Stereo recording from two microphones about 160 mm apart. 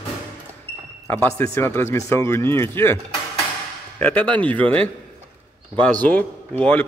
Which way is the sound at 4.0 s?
10° left (ahead or behind).